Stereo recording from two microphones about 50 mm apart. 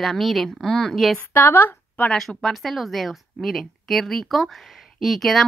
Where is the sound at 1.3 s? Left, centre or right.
Left.